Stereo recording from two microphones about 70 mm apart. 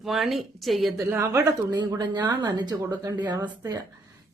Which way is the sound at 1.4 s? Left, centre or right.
Right.